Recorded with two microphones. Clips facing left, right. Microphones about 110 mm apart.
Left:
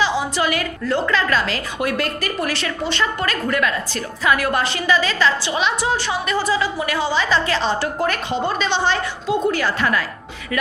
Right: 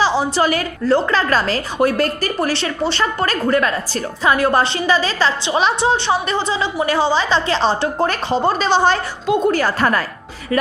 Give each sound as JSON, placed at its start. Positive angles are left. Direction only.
{"t": 0.0, "sound": "a woman's voice", "side_deg": -35}